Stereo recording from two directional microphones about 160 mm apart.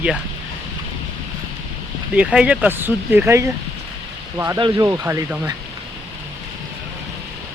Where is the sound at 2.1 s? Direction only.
5° right (ahead or behind).